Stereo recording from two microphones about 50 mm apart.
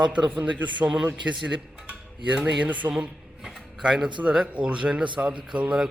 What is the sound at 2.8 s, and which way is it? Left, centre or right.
Speech, right.